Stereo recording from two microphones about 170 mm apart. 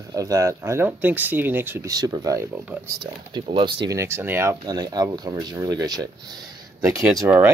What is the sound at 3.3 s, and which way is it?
Speech, 30° right (ahead or behind).